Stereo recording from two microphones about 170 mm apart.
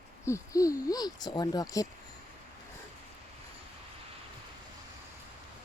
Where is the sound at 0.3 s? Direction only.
20° left (ahead or behind).